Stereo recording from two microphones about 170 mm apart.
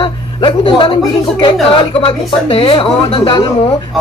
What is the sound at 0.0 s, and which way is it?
Speech, 30° left (ahead or behind).